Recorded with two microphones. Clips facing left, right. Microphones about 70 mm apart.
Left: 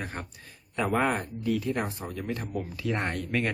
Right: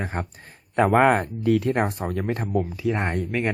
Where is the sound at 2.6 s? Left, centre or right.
Centre.